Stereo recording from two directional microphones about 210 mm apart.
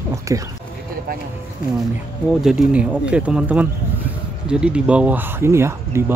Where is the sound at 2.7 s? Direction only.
5° right (ahead or behind).